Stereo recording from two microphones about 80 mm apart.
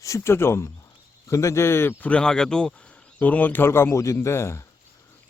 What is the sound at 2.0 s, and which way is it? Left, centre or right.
Speech, centre.